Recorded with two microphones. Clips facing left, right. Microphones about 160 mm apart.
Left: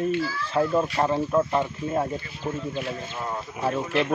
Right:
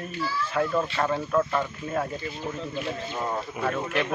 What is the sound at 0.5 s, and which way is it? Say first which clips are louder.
Speech: left 4 dB; 25° left (ahead or behind).